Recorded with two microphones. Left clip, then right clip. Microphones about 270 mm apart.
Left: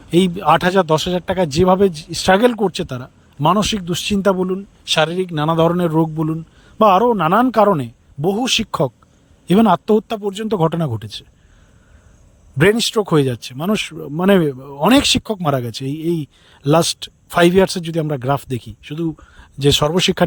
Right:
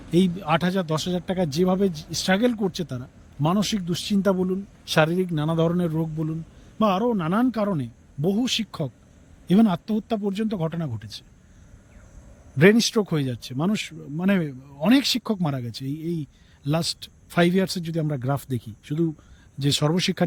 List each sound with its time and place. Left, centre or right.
0.1 s speech: centre
12.5 s speech: centre